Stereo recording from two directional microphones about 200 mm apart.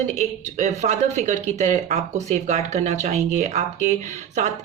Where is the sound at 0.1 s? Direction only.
35° right (ahead or behind).